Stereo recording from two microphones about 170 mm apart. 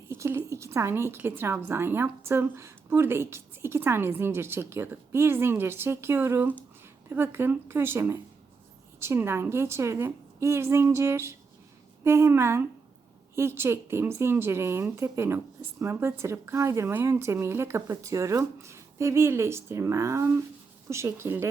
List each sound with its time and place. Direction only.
0.1 s a woman's voice: 15° right (ahead or behind)